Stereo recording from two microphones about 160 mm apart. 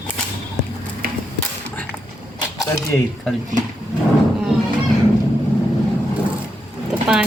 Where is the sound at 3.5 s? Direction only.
50° right (ahead or behind).